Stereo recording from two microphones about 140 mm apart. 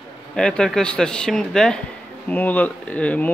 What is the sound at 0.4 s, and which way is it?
Speech, 5° left (ahead or behind).